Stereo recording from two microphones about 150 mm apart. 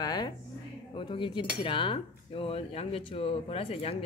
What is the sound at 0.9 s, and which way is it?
Speech, 35° left (ahead or behind).